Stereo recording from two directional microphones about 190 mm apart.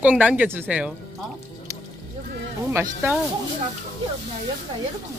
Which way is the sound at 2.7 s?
10° right (ahead or behind).